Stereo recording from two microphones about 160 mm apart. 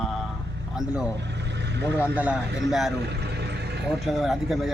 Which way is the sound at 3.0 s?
90° right.